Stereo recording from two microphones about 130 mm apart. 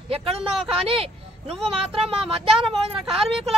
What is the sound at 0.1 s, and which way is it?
A woman's voice, 50° right (ahead or behind).